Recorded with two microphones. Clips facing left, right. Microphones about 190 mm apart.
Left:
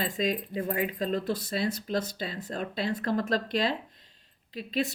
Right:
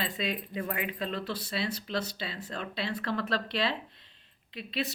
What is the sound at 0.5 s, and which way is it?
Speech, 35° left (ahead or behind).